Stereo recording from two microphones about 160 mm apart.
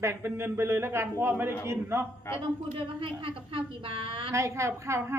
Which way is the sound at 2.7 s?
35° right (ahead or behind).